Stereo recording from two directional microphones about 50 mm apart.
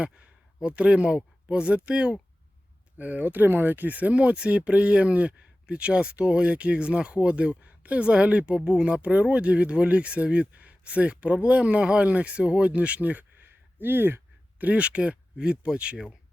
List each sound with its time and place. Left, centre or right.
0.0 s speech: right
3.0 s speech: right
4.1 s a woman's voice: right
14.6 s speech: right